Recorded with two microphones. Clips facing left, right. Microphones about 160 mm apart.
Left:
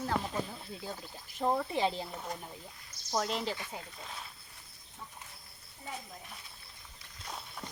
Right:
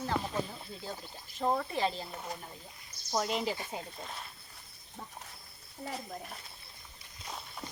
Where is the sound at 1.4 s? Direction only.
10° left (ahead or behind).